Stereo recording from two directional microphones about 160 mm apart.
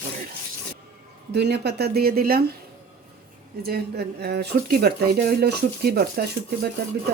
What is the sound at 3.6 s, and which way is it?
Speech, 75° right (ahead or behind).